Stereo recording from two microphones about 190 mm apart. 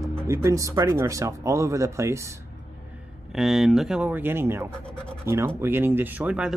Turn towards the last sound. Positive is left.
turn(degrees=-5)  # may be behind; listen again after turning